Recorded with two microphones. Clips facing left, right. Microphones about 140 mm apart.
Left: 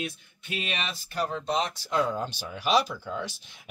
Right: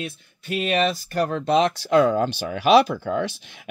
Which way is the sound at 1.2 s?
65° right (ahead or behind).